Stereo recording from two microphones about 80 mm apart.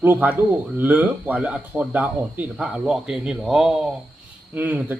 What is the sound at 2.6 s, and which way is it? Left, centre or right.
A man's voice, centre.